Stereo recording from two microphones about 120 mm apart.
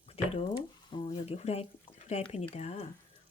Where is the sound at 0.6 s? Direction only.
40° left (ahead or behind).